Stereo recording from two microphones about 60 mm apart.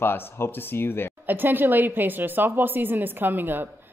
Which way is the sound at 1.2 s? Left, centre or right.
Right.